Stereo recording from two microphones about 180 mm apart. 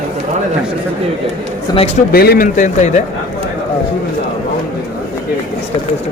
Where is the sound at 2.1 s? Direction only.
60° left (ahead or behind); by 3.0 s 40° left (ahead or behind).